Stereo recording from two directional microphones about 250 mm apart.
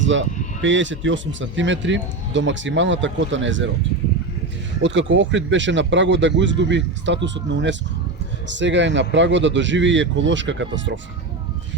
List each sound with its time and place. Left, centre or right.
0.1 s speech: right
4.8 s speech: right